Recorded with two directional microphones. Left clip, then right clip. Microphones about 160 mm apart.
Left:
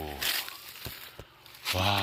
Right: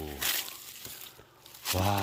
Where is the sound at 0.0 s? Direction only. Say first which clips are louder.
Left 2 dB; 15° right (ahead or behind).